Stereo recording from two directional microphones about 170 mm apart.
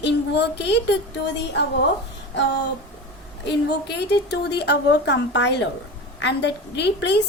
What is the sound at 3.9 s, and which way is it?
A woman's voice, 80° left.